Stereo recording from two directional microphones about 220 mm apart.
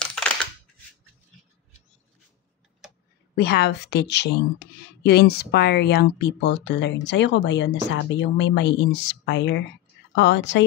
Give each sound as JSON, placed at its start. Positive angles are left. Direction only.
{"t": 0.0, "sound": "a sound", "side_deg": 5}
{"t": 1.3, "sound": "mouse", "side_deg": 0}
{"t": 3.3, "sound": "a woman's voice", "side_deg": 50}